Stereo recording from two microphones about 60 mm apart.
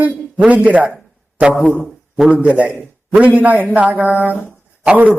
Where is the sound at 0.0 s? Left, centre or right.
Right.